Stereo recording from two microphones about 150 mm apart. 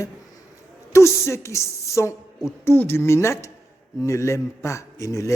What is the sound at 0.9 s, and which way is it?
A woman's voice, 20° left (ahead or behind).